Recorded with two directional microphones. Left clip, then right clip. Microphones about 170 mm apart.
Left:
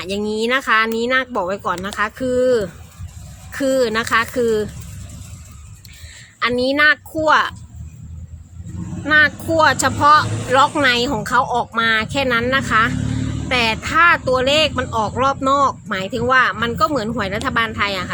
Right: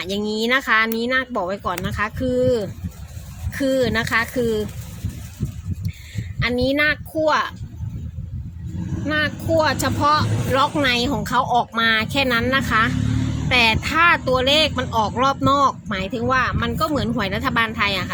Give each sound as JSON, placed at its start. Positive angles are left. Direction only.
{"t": 0.0, "sound": "speech", "side_deg": 10}
{"t": 6.4, "sound": "speech", "side_deg": 20}
{"t": 9.0, "sound": "speech", "side_deg": 25}